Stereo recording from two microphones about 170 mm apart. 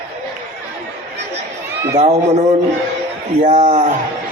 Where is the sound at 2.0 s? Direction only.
40° right (ahead or behind).